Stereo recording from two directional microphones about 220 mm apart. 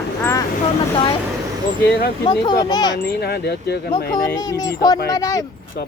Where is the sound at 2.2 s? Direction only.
20° left (ahead or behind).